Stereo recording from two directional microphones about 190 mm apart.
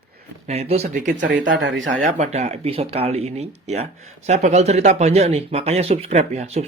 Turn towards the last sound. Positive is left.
turn(degrees=-35)  # may be behind; listen again after turning